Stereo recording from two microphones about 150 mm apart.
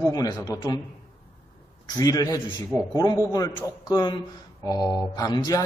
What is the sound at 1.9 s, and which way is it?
Speech, 25° left (ahead or behind).